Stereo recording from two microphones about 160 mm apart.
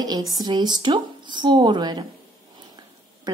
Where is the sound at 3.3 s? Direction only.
25° right (ahead or behind).